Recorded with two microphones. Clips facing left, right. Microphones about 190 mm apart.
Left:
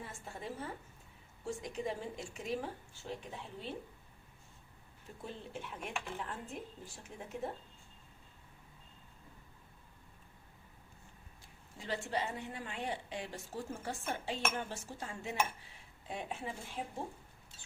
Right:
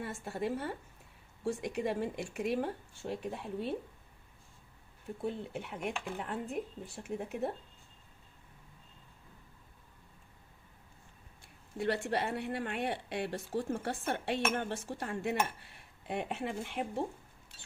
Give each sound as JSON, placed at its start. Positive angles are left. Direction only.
{"t": 0.0, "sound": "a woman's voice", "side_deg": -75}
{"t": 5.2, "sound": "speech", "side_deg": -60}
{"t": 11.8, "sound": "a woman's voice", "side_deg": -70}